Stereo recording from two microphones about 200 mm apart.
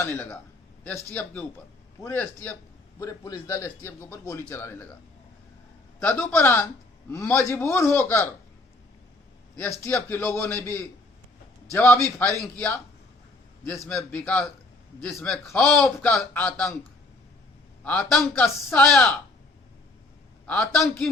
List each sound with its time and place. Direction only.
0.0 s a man's voice: 10° left (ahead or behind)
6.0 s a man's voice: 5° left (ahead or behind)
9.6 s a man's voice: 15° left (ahead or behind)
11.9 s a man's voice: 15° right (ahead or behind)
13.7 s a man's voice: 5° left (ahead or behind)
17.8 s speech: 5° left (ahead or behind)
20.5 s speech: 5° left (ahead or behind)